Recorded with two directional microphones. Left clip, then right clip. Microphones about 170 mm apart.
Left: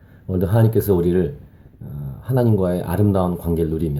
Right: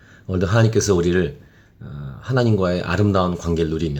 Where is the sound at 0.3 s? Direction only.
Centre (ahead or behind).